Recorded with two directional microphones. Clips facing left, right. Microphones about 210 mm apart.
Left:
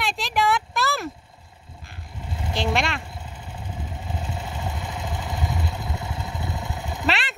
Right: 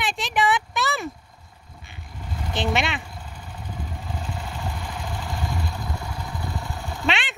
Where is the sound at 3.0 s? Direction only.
25° left (ahead or behind).